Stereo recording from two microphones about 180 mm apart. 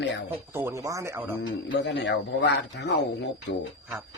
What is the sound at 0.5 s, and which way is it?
Speech, 15° right (ahead or behind).